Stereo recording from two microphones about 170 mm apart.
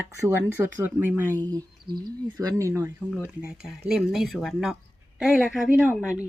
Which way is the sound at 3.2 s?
5° right (ahead or behind).